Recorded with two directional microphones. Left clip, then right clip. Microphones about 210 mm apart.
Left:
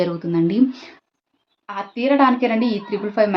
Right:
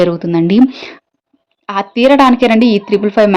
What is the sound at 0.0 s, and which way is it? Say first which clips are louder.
A woman's voice: right 8 dB; 40° right (ahead or behind).